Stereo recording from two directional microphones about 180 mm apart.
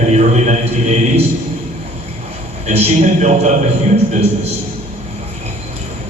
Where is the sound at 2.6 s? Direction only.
40° right (ahead or behind).